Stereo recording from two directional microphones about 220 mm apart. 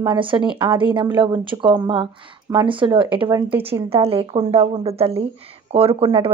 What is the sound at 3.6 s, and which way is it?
A woman's voice, 25° right (ahead or behind).